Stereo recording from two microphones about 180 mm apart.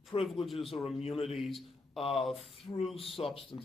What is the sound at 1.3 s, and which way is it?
A man's voice, centre (ahead or behind).